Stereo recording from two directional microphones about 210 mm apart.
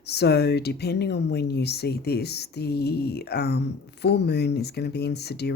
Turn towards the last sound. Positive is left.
turn(degrees=50)  # may be behind; listen again after turning